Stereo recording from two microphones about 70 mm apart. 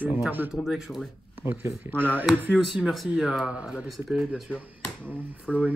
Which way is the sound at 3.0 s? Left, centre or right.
Centre.